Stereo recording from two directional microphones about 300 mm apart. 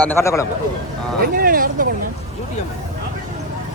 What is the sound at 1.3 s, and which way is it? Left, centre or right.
Speech, right.